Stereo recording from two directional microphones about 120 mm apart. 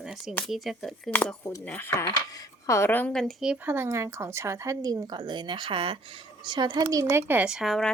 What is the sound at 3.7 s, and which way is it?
A woman's voice, 20° right (ahead or behind).